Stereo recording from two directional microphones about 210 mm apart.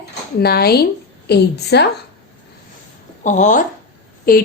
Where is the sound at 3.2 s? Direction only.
35° left (ahead or behind).